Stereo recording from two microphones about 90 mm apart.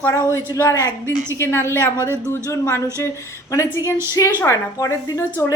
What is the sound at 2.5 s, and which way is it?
A woman's voice, 30° left (ahead or behind).